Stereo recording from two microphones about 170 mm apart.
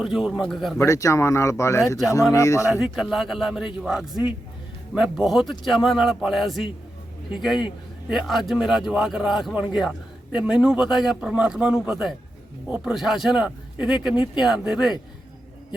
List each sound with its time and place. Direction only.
0.0 s speech: 5° right (ahead or behind)
0.8 s speech: 20° left (ahead or behind)
2.8 s speech: centre (ahead or behind)
8.1 s speech: centre (ahead or behind)